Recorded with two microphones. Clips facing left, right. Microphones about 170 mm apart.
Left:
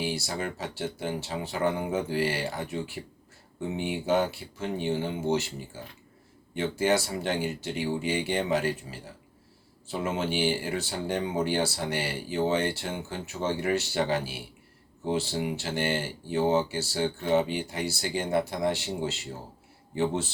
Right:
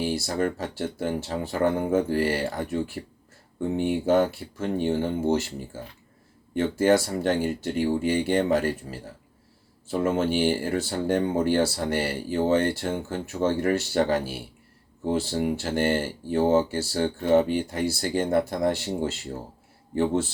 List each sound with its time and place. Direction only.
0.0 s speech: 50° right (ahead or behind)